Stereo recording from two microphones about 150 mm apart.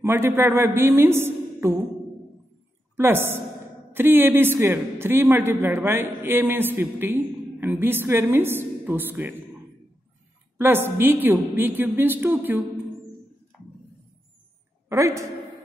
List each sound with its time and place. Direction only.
0.0 s a man's voice: 15° right (ahead or behind)
3.0 s a man's voice: 15° right (ahead or behind)
10.6 s a man's voice: 15° right (ahead or behind)
13.5 s a sound: centre (ahead or behind)
14.9 s a woman's voice: 20° right (ahead or behind)